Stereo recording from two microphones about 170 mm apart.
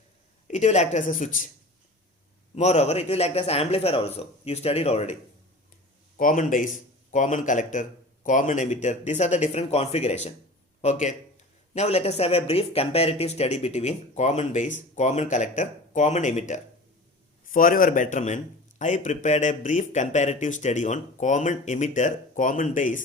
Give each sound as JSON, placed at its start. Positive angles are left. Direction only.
{"t": 0.4, "sound": "speech", "side_deg": 45}
{"t": 2.6, "sound": "speech", "side_deg": 40}
{"t": 6.1, "sound": "speech", "side_deg": 55}
{"t": 17.5, "sound": "speech", "side_deg": 55}